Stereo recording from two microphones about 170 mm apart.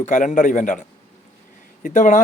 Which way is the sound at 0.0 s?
45° left (ahead or behind).